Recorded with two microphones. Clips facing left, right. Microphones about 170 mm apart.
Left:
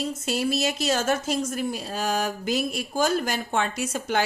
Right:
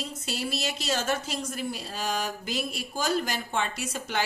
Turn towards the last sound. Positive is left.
turn(degrees=50)  # may be behind; listen again after turning